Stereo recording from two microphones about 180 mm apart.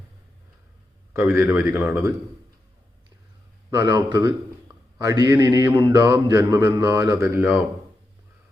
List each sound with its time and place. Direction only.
1.1 s a man's voice: 15° right (ahead or behind)
3.7 s a man's voice: 25° right (ahead or behind)